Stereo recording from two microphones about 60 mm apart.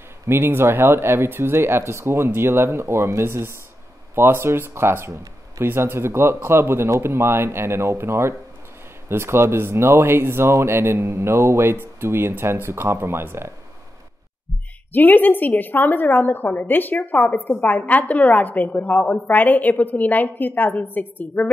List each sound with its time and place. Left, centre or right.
0.3 s speech: right
14.9 s a woman's voice: left